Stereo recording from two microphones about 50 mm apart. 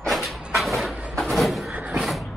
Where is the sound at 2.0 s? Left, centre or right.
Centre.